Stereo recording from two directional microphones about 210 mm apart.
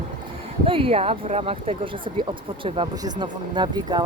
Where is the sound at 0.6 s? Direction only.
25° right (ahead or behind).